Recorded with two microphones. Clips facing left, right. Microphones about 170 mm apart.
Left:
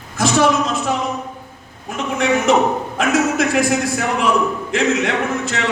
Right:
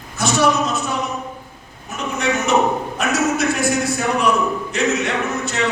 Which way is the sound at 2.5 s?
90° left.